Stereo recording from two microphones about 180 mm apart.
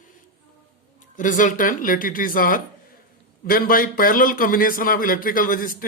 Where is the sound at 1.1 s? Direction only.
45° left (ahead or behind).